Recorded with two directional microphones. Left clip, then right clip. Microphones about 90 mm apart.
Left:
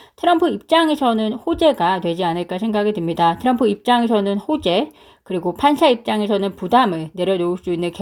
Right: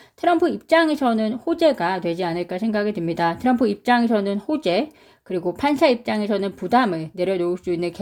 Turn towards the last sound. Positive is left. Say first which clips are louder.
# left 2 dB
turn(degrees=45)  # may be behind; listen again after turning